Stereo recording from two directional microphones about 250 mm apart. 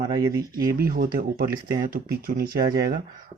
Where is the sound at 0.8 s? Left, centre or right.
Right.